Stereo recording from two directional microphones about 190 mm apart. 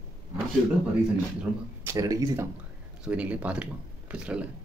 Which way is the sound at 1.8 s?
15° right (ahead or behind).